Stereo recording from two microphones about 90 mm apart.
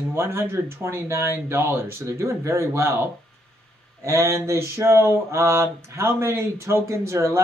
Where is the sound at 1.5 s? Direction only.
30° right (ahead or behind).